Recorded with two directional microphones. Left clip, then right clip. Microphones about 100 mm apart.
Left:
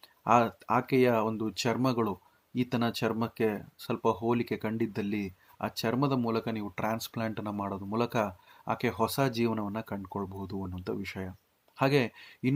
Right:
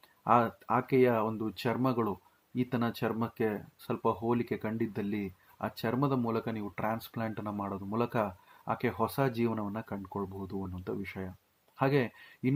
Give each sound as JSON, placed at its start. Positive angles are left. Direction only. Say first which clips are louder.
{"t": 0.3, "sound": "speech", "louder": "left 2 dB", "side_deg": 25}